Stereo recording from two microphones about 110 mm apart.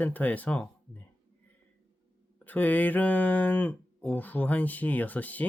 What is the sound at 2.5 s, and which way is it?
Mantra, 15° left (ahead or behind).